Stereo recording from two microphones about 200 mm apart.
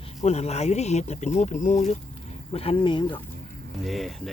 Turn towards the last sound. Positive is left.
turn(degrees=0)  # may be behind; listen again after turning